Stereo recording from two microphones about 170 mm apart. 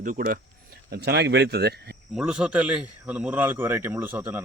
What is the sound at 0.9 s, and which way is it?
Speech, 75° right (ahead or behind).